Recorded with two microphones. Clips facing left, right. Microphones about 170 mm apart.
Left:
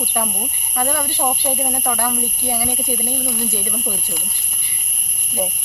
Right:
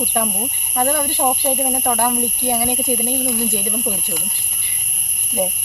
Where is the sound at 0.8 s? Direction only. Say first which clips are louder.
Right 3 dB; 20° right (ahead or behind).